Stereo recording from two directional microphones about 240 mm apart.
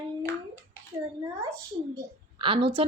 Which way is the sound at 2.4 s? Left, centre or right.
Right.